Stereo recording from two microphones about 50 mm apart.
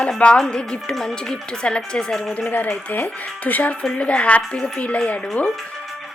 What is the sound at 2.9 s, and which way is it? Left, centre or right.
Speech, left.